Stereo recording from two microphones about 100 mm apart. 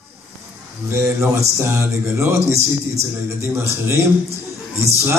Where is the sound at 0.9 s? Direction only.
30° right (ahead or behind).